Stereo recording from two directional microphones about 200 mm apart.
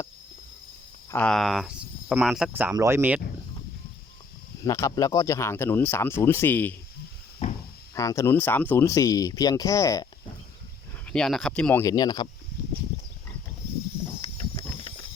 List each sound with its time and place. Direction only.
1.1 s speech: 5° left (ahead or behind)
4.6 s speech: 20° left (ahead or behind)
7.4 s a sound: 35° left (ahead or behind)
7.9 s speech: 15° left (ahead or behind)
11.0 s speech: 5° left (ahead or behind); by 12.3 s 20° left (ahead or behind)
14.2 s a sound: 20° left (ahead or behind)